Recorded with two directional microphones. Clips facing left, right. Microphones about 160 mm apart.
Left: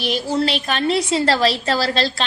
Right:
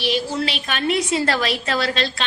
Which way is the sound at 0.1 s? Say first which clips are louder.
Left 4 dB; 40° left (ahead or behind).